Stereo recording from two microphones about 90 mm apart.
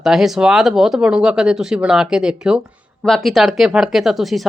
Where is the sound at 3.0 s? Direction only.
5° left (ahead or behind).